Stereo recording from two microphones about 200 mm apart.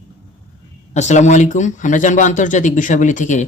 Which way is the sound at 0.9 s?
35° left (ahead or behind).